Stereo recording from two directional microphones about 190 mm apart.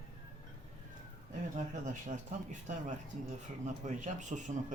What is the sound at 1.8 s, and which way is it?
Speech, 40° right (ahead or behind).